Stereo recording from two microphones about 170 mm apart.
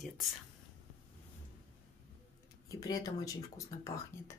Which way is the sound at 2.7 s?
20° left (ahead or behind).